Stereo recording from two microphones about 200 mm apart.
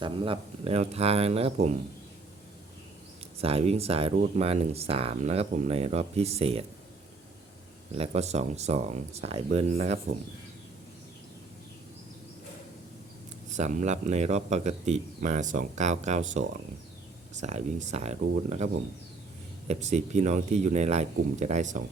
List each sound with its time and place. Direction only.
0.0 s speech: 25° right (ahead or behind)
3.4 s speech: 30° right (ahead or behind)
7.9 s speech: 30° right (ahead or behind)
13.5 s speech: 40° right (ahead or behind)
17.4 s speech: 35° right (ahead or behind)